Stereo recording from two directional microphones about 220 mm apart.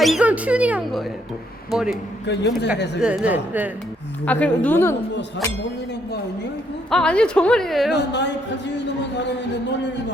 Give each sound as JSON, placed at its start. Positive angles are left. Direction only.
{"t": 0.0, "sound": "speech", "side_deg": -5}
{"t": 2.2, "sound": "a man's voice", "side_deg": 50}
{"t": 3.0, "sound": "speech", "side_deg": -5}
{"t": 4.3, "sound": "a woman's voice", "side_deg": 5}
{"t": 6.9, "sound": "speech", "side_deg": 5}
{"t": 7.9, "sound": "a man's voice", "side_deg": 50}